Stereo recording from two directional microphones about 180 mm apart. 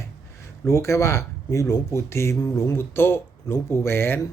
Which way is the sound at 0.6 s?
15° left (ahead or behind).